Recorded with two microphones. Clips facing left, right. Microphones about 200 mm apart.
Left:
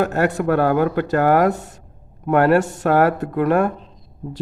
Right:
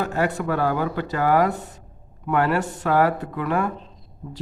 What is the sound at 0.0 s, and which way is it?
A man's voice, 50° left (ahead or behind).